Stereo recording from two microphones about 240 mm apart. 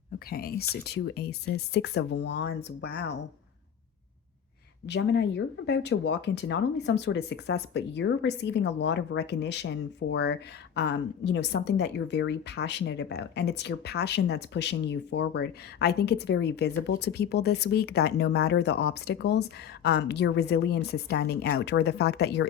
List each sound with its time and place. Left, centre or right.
0.3 s a woman's voice: left
4.9 s a woman's voice: left